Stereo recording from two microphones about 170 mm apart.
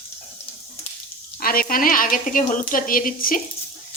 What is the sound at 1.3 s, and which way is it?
A woman's voice, 60° left (ahead or behind).